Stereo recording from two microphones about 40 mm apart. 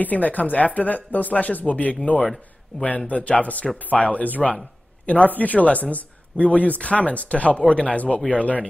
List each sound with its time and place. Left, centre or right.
0.0 s a man's voice: left